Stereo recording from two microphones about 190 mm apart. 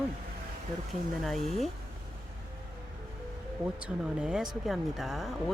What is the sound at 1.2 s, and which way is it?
Speech, centre (ahead or behind).